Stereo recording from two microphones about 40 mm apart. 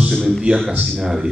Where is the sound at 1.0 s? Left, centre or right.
Centre.